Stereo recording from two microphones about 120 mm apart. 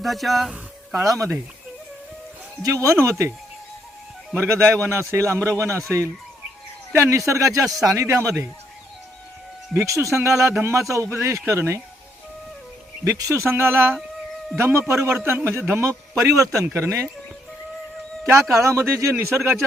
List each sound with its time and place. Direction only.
0.0 s a sound: centre (ahead or behind)
2.6 s a man's voice: 25° right (ahead or behind)
4.4 s a man's voice: 20° right (ahead or behind)
9.7 s a man's voice: 25° right (ahead or behind)
13.1 s a man's voice: 25° right (ahead or behind)
18.3 s a man's voice: 25° right (ahead or behind)